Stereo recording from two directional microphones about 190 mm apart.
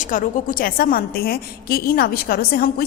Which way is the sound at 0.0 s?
45° left (ahead or behind).